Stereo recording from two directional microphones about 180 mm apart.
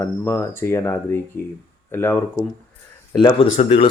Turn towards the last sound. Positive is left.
turn(degrees=30)  # may be behind; listen again after turning